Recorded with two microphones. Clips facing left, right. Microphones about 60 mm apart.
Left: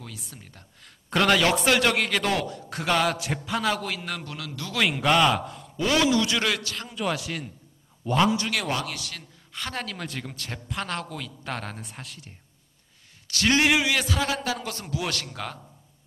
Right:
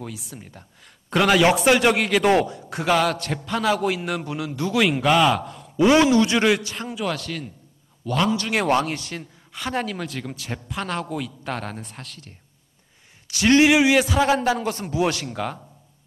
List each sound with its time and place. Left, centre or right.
0.0 s speech: centre
2.2 s a man's voice: right
2.7 s a man's voice: centre
3.8 s a man's voice: centre
4.7 s a man's voice: centre
5.8 s a man's voice: right
7.0 s a man's voice: centre
8.6 s speech: right
9.5 s a man's voice: centre
13.3 s speech: centre
14.3 s a man's voice: right
15.1 s speech: centre